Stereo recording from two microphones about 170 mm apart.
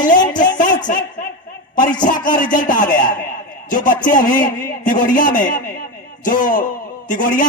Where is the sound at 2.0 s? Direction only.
50° left (ahead or behind).